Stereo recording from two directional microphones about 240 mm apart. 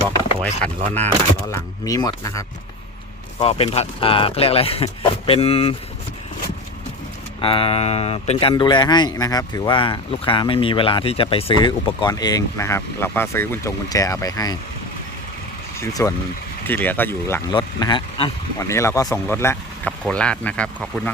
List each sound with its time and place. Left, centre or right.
0.8 s speech: right
1.5 s speech: centre
7.4 s speech: left
15.8 s speech: centre